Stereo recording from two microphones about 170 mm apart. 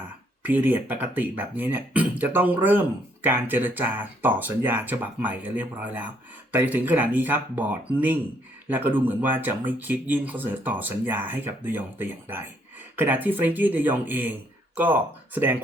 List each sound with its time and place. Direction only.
0.4 s speech: 10° right (ahead or behind)